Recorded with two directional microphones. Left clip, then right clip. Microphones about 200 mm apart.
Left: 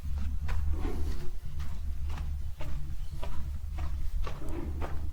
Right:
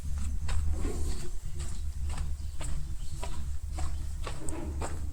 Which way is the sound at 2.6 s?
5° left (ahead or behind).